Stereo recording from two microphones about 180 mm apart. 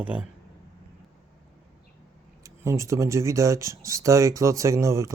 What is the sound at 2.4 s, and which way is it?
Speech, 15° right (ahead or behind).